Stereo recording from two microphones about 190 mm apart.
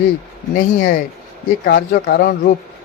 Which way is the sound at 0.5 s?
50° left (ahead or behind).